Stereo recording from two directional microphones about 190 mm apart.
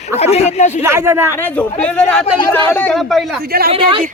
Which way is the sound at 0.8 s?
15° right (ahead or behind).